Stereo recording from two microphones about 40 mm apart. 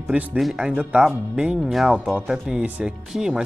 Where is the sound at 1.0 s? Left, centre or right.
Centre.